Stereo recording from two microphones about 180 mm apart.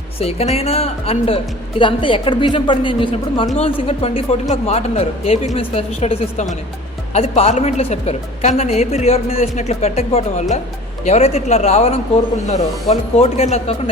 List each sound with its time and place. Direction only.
0.2 s a woman's voice: 35° left (ahead or behind)